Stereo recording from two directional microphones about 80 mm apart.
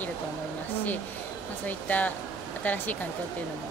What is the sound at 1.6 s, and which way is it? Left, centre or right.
Speech, centre.